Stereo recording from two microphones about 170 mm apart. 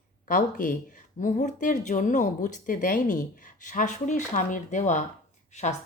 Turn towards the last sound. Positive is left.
turn(degrees=40)  # may be behind; listen again after turning